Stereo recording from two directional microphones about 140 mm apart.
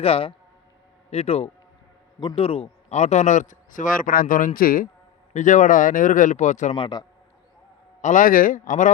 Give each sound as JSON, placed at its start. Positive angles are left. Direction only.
{"t": 0.0, "sound": "a man's voice", "side_deg": 40}
{"t": 5.3, "sound": "a man's voice", "side_deg": 60}
{"t": 6.7, "sound": "a man's voice", "side_deg": 35}
{"t": 8.0, "sound": "a man's voice", "side_deg": 70}